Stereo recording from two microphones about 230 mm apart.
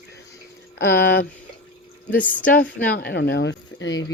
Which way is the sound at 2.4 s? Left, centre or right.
Left.